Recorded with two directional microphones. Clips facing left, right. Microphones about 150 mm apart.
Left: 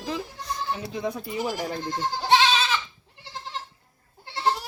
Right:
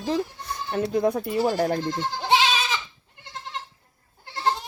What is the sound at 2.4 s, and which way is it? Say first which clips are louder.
Goat: left 1 dB; 10° right (ahead or behind).